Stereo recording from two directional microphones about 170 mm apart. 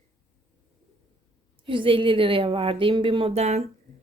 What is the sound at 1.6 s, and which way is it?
Speech, 30° right (ahead or behind).